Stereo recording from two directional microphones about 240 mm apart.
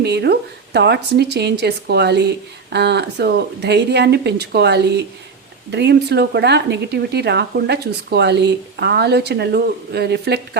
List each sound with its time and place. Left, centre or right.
0.0 s speech: right